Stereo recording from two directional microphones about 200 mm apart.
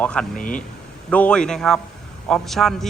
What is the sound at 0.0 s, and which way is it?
Speech, 5° left (ahead or behind).